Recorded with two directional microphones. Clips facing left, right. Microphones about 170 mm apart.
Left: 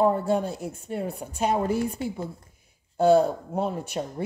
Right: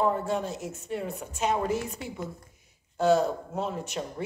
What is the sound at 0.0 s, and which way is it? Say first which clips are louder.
A woman's voice: left 4 dB; 35° left (ahead or behind).